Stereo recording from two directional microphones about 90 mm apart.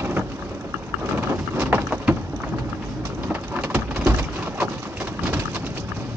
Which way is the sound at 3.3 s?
20° right (ahead or behind).